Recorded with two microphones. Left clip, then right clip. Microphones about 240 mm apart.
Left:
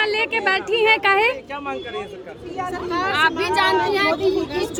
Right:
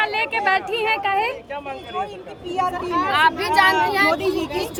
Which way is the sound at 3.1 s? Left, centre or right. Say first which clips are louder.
Right 1 dB; centre.